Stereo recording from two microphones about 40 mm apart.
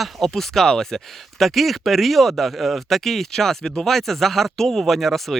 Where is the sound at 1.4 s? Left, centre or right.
Centre.